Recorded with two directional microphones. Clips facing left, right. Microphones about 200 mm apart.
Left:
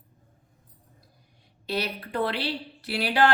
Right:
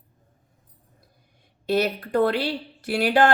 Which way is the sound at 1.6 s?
50° right (ahead or behind).